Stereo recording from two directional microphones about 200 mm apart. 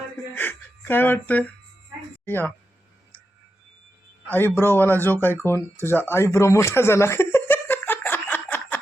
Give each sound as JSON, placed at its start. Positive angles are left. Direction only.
{"t": 0.3, "sound": "speech", "side_deg": 10}
{"t": 4.3, "sound": "speech", "side_deg": 10}